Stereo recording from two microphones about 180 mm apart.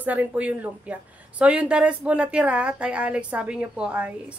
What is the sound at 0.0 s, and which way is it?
A woman's voice, 10° right (ahead or behind).